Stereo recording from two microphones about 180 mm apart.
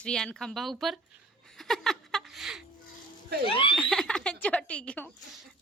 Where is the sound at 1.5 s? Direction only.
Centre (ahead or behind).